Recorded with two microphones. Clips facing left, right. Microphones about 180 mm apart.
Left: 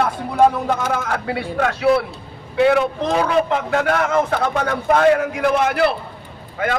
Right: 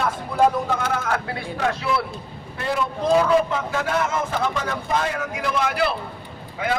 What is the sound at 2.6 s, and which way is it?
A man's voice, 75° left (ahead or behind).